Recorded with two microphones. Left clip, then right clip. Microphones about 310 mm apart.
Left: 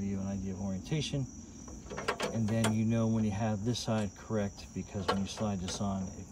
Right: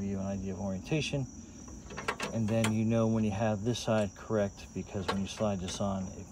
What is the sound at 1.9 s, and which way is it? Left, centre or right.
Ratchet, centre.